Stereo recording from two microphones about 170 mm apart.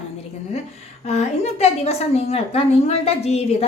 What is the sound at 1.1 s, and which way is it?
A woman's voice, 40° left (ahead or behind).